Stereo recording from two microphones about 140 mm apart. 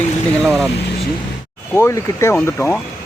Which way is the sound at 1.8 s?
15° left (ahead or behind).